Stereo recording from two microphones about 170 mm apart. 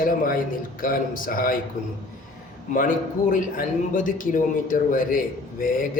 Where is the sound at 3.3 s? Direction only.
50° left (ahead or behind).